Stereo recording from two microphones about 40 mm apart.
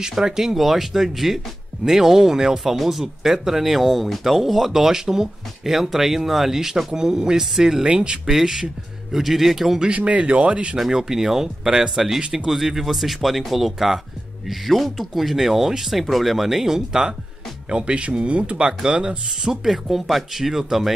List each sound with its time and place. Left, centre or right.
0.1 s speech: centre
8.3 s speech: centre
9.9 s speech: right
10.8 s speech: centre
12.2 s speech: right
12.4 s speech: centre
17.6 s speech: right
18.7 s speech: centre